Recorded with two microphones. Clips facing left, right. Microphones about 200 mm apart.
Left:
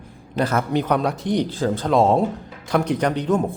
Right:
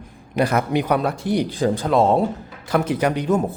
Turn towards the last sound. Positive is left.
turn(degrees=-5)  # may be behind; listen again after turning